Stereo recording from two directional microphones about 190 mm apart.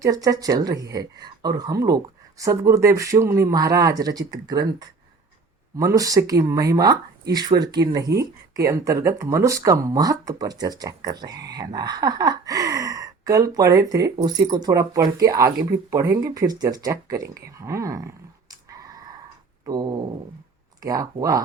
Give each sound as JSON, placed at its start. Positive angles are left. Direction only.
{"t": 0.0, "sound": "speech", "side_deg": -20}
{"t": 19.6, "sound": "speech", "side_deg": -20}